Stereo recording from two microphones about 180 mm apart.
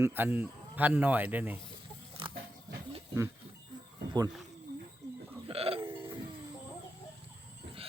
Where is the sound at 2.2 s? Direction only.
30° right (ahead or behind).